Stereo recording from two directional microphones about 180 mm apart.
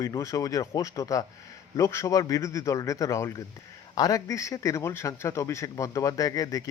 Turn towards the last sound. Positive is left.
turn(degrees=20)  # may be behind; listen again after turning